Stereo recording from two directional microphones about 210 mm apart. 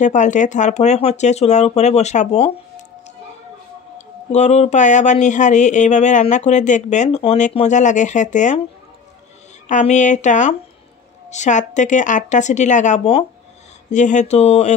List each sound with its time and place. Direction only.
0.0 s speech: 35° left (ahead or behind)
4.3 s speech: 30° left (ahead or behind)
9.7 s speech: 35° left (ahead or behind)